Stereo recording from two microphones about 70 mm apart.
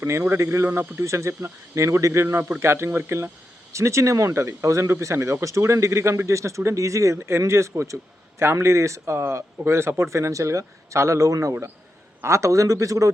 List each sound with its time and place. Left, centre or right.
0.0 s speech: right
3.7 s speech: right